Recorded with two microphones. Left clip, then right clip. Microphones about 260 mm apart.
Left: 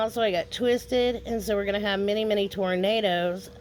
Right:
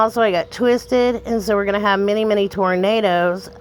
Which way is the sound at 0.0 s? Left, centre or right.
Centre.